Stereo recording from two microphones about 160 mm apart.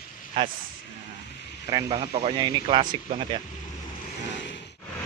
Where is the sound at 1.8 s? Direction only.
35° right (ahead or behind).